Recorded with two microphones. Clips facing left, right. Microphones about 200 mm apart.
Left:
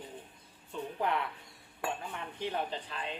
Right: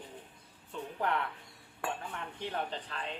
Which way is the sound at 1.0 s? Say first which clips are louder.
Even; 10° left (ahead or behind).